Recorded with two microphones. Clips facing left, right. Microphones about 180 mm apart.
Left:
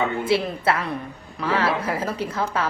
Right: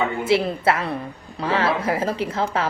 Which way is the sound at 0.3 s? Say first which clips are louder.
Right 4 dB; 25° right (ahead or behind).